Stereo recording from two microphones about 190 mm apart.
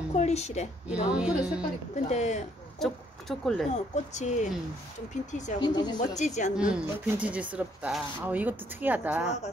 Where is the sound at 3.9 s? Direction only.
40° left (ahead or behind).